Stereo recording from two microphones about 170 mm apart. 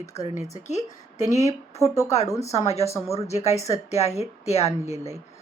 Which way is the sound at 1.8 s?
20° left (ahead or behind).